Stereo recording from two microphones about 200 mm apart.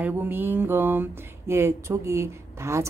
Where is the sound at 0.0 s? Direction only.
10° right (ahead or behind).